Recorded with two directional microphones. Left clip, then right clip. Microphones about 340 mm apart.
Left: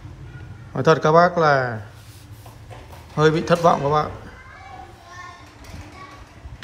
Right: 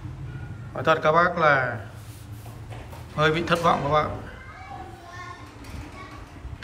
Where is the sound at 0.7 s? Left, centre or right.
Centre.